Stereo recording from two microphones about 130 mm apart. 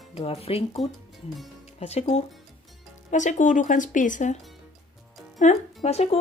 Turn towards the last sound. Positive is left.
turn(degrees=55)  # may be behind; listen again after turning